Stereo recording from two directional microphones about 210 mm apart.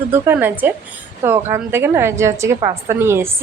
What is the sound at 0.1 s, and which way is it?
Speech, 10° right (ahead or behind).